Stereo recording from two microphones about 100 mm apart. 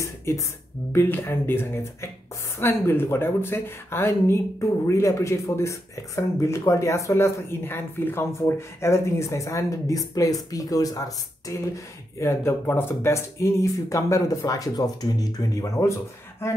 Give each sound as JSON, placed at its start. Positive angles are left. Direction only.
{"t": 0.0, "sound": "speech", "side_deg": 30}
{"t": 0.9, "sound": "speech", "side_deg": 20}